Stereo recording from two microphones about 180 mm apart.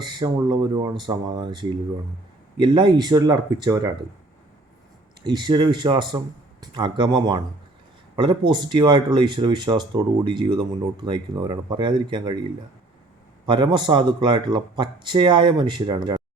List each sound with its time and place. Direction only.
0.0 s speech: 25° right (ahead or behind)
5.2 s speech: 25° right (ahead or behind)